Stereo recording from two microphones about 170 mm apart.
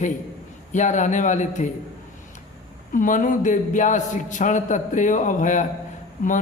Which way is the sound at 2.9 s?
50° left (ahead or behind).